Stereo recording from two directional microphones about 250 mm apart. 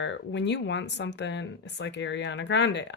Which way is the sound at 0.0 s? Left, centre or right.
Left.